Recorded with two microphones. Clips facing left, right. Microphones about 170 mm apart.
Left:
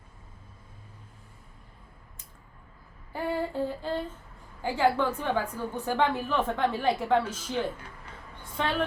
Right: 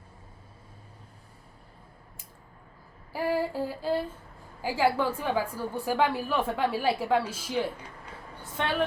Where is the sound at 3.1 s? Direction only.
5° right (ahead or behind).